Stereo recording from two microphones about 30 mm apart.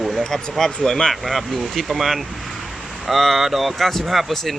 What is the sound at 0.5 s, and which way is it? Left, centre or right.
Speech, centre.